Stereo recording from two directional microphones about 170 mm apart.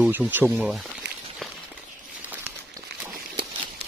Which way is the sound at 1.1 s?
80° right.